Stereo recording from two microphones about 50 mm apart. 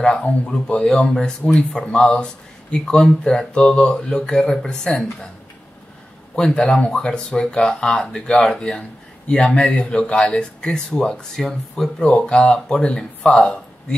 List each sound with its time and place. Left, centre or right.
0.0 s speech: centre
6.3 s speech: centre
11.3 s speech: centre